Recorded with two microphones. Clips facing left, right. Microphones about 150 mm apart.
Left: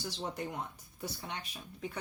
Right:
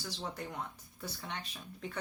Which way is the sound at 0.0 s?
15° left (ahead or behind).